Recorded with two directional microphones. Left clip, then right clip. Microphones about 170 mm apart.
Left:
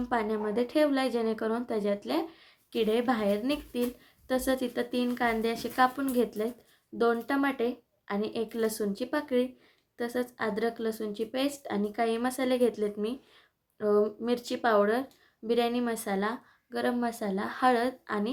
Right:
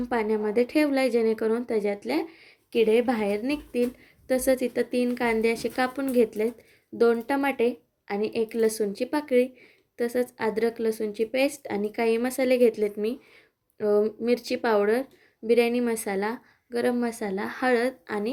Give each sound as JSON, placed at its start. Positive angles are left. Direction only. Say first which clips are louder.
{"t": 0.0, "sound": "a woman's voice", "louder": "right 4 dB", "side_deg": -15}